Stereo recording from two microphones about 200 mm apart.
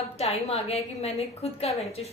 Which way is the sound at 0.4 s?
30° left (ahead or behind).